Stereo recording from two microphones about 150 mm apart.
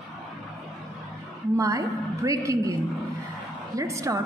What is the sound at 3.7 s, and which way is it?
Speech, 20° right (ahead or behind).